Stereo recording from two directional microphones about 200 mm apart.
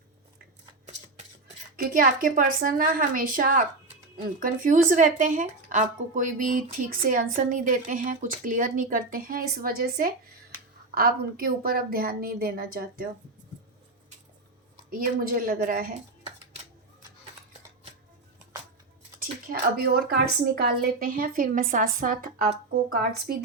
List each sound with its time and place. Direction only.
1.7 s a woman's voice: 45° right (ahead or behind)
14.8 s a woman's voice: 45° right (ahead or behind)
19.2 s a woman's voice: 50° right (ahead or behind)